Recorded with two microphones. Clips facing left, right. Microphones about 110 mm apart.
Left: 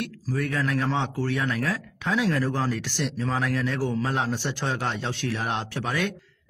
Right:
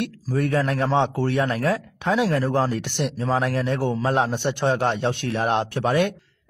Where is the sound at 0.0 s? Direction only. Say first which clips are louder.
Right 5 dB; 30° right (ahead or behind).